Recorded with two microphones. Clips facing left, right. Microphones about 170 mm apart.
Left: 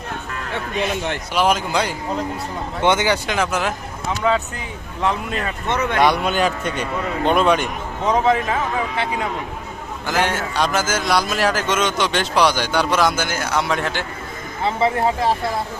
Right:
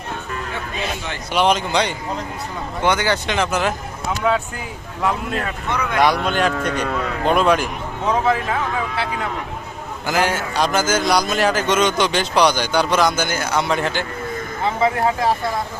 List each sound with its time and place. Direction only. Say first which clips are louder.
1.3 s a man's voice: right 2 dB; 5° left (ahead or behind)
2.8 s speech: left 1 dB; 20° left (ahead or behind)
3.2 s a man's voice: right 1 dB; 5° left (ahead or behind)
5.6 s speech: left 5 dB; 25° left (ahead or behind)
6.0 s a man's voice: right 1 dB; centre (ahead or behind)